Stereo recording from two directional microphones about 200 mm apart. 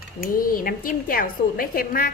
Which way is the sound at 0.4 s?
45° left (ahead or behind).